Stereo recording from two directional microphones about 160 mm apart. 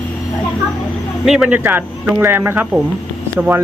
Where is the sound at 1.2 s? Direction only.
5° right (ahead or behind).